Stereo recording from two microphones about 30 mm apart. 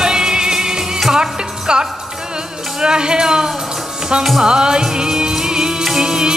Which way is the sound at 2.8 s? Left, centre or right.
Right.